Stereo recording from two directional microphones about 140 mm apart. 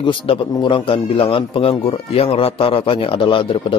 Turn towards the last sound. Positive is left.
turn(degrees=40)  # may be behind; listen again after turning